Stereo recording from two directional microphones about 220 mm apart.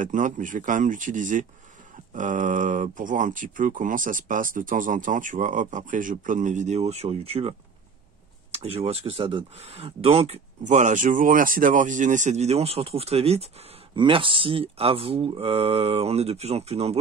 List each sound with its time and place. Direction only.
0.0 s speech: 35° right (ahead or behind)